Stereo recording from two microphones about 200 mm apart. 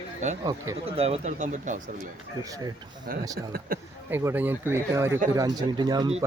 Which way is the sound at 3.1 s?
45° right (ahead or behind).